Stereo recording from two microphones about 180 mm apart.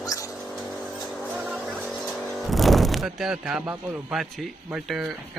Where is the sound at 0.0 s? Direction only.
20° left (ahead or behind).